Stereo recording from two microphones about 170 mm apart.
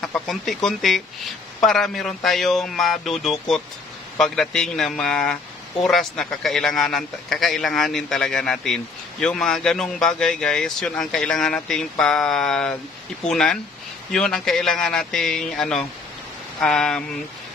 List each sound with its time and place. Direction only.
0.0 s speech: centre (ahead or behind)